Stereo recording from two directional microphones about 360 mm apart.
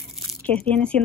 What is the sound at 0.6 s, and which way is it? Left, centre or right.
Speech, centre.